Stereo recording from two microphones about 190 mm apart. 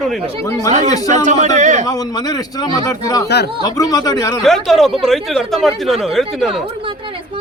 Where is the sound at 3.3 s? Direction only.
60° left (ahead or behind).